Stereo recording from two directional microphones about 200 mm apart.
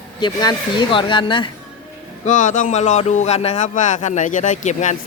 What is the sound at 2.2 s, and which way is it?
Speech, 40° left (ahead or behind).